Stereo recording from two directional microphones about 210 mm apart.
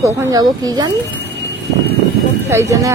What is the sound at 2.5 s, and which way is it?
Speech, 15° right (ahead or behind).